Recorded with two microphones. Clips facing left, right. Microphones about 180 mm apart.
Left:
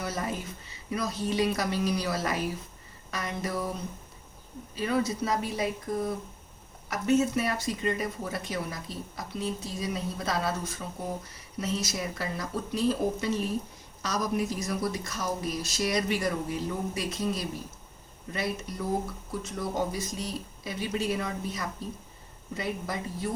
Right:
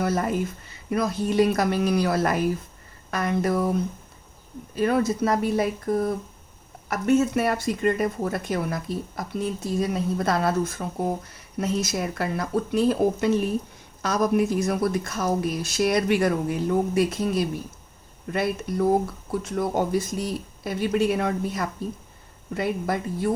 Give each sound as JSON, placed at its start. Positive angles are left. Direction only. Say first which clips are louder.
{"t": 0.0, "sound": "speech", "louder": "right 9 dB", "side_deg": -55}